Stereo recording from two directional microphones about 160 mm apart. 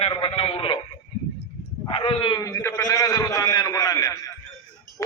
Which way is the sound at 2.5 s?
15° left (ahead or behind).